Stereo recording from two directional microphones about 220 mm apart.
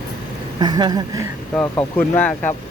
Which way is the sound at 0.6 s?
20° right (ahead or behind).